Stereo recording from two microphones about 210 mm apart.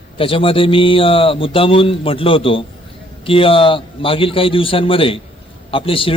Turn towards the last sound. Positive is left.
turn(degrees=25)  # may be behind; listen again after turning